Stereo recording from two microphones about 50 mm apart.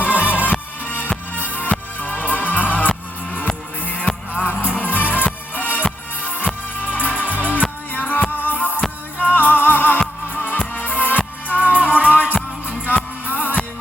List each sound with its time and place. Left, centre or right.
0.0 s music: left
11.9 s music: right
13.2 s music: left